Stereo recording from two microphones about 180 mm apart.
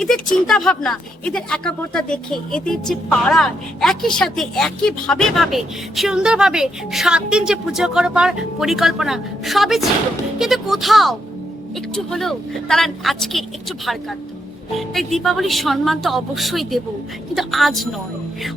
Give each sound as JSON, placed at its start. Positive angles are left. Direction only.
{"t": 0.0, "sound": "speech", "side_deg": 0}
{"t": 14.8, "sound": "speech", "side_deg": 0}